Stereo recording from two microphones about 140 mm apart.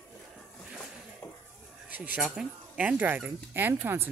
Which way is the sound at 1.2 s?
25° left (ahead or behind).